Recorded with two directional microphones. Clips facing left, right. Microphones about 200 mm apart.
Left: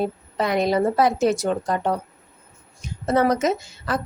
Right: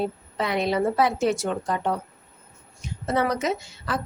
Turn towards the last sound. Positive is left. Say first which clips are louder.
# left 3 dB
turn(degrees=45)  # may be behind; listen again after turning